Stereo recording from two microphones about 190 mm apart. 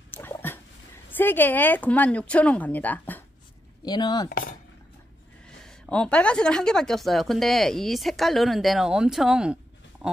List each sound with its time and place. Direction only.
0.1 s fowl: 10° left (ahead or behind)
1.1 s speech: 10° left (ahead or behind)
3.8 s speech: 20° left (ahead or behind)
4.3 s speech: 55° left (ahead or behind)
5.7 s a woman's voice: 5° left (ahead or behind)